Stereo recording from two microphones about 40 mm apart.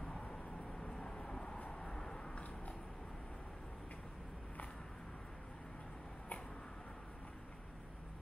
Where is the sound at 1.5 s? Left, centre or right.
Left.